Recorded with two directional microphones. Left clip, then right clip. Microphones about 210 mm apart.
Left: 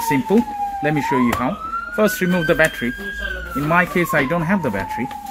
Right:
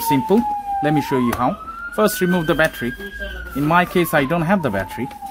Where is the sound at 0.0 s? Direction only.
75° right (ahead or behind); by 5.0 s 55° right (ahead or behind).